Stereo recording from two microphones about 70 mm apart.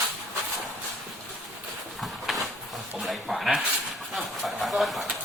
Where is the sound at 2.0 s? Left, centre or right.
Centre.